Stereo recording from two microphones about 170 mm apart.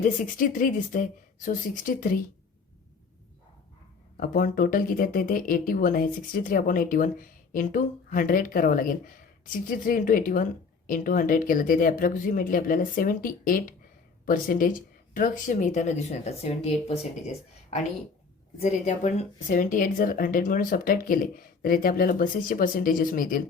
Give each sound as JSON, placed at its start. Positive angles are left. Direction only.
{"t": 0.0, "sound": "speech", "side_deg": 50}
{"t": 4.2, "sound": "speech", "side_deg": 55}